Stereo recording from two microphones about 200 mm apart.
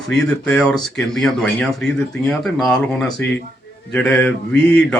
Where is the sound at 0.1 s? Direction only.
5° left (ahead or behind).